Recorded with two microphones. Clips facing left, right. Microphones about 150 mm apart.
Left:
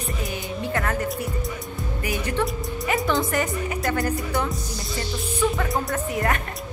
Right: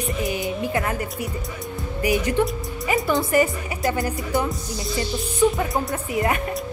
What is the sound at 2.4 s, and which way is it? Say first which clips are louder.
Speech: right 2 dB; 15° right (ahead or behind).